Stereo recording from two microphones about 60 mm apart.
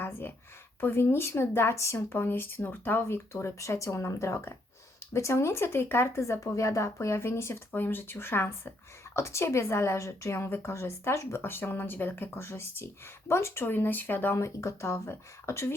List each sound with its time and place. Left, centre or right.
0.0 s speech: left
3.6 s a woman's voice: left
7.7 s speech: left
9.1 s a woman's voice: left
14.3 s a woman's voice: left